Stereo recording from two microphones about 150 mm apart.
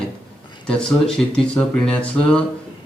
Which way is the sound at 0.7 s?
5° left (ahead or behind).